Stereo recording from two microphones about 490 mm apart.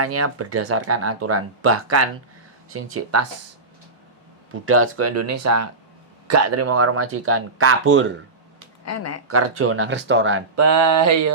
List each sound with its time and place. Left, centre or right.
0.0 s speech: right
4.6 s speech: right
8.8 s speech: left
9.2 s speech: right